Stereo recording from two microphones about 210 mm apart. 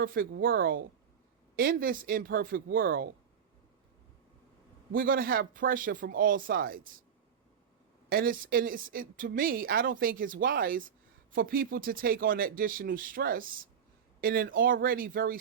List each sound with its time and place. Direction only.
0.0 s speech: 45° right (ahead or behind)
4.9 s speech: 45° right (ahead or behind)
8.1 s speech: 45° right (ahead or behind)